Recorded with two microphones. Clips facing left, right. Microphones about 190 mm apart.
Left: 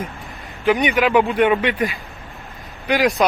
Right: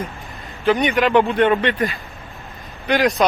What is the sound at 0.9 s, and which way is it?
Speech, 5° left (ahead or behind).